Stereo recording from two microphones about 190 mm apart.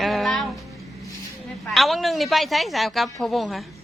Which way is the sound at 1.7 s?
Centre (ahead or behind).